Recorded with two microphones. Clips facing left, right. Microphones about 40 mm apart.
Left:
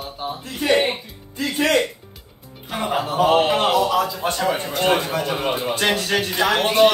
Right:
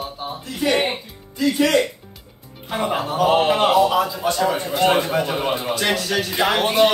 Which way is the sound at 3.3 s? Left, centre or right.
Centre.